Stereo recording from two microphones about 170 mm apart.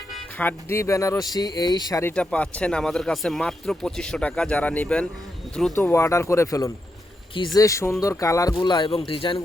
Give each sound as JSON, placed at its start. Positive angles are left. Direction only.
{"t": 0.3, "sound": "speech", "side_deg": 15}